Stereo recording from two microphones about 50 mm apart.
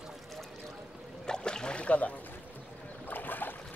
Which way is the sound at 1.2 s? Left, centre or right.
Centre.